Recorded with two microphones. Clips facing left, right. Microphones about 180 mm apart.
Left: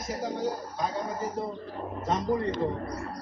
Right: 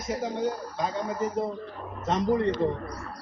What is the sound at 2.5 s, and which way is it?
Speech, 45° left (ahead or behind).